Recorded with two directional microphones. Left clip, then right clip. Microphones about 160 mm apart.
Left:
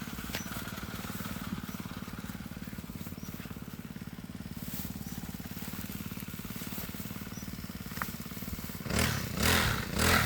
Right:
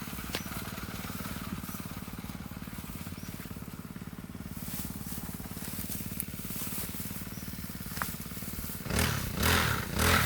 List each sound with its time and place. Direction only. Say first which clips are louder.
8.9 s vehicle: even; 30° left (ahead or behind)